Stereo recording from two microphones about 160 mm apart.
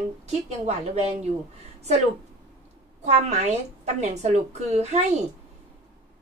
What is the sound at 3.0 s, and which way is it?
A woman's voice, 45° right (ahead or behind).